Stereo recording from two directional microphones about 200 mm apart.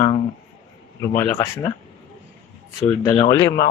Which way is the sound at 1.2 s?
10° left (ahead or behind).